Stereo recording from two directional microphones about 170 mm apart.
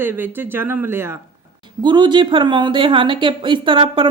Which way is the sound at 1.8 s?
25° right (ahead or behind).